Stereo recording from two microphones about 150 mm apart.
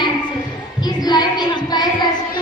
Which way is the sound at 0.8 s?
25° left (ahead or behind).